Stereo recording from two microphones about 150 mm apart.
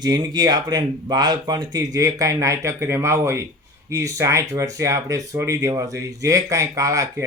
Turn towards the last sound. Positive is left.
turn(degrees=-20)  # may be behind; listen again after turning